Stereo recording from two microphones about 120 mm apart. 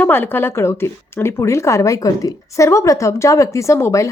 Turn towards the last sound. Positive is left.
turn(degrees=25)  # may be behind; listen again after turning